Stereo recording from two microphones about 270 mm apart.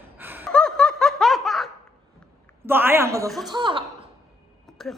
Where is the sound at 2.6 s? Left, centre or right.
Centre.